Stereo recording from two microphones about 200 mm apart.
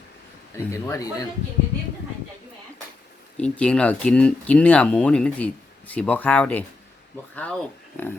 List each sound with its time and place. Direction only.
0.5 s speech: 15° left (ahead or behind)
3.3 s speech: 5° left (ahead or behind)